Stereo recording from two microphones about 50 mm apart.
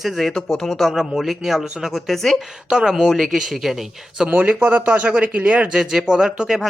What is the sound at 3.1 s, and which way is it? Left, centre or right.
Speech, centre.